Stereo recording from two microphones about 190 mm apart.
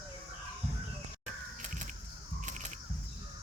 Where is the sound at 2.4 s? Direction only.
40° right (ahead or behind).